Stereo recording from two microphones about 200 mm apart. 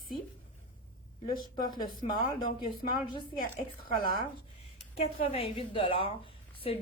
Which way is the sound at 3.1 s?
20° left (ahead or behind).